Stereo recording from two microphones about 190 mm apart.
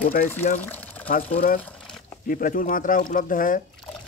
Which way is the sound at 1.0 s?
45° left (ahead or behind).